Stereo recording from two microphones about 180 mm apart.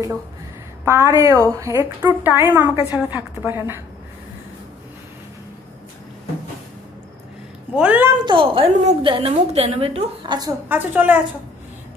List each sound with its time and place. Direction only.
0.8 s a woman's voice: 15° right (ahead or behind)
7.7 s a woman's voice: 10° right (ahead or behind)
8.3 s a woman's voice: 30° right (ahead or behind)
10.7 s a woman's voice: 10° right (ahead or behind)